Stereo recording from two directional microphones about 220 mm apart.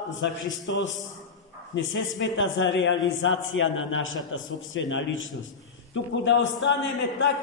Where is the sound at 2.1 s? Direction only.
60° left (ahead or behind).